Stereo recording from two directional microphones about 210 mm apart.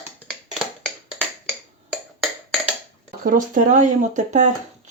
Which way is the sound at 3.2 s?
40° right (ahead or behind).